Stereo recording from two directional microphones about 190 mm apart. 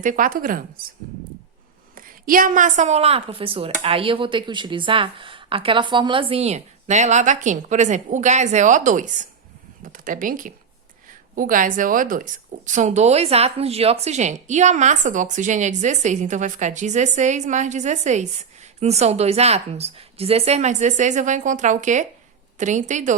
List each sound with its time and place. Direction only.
0.0 s a woman's voice: 45° right (ahead or behind)
2.0 s speech: 50° right (ahead or behind)